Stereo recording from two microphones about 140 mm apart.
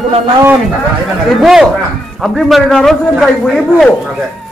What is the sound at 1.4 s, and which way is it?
A man's voice, centre (ahead or behind).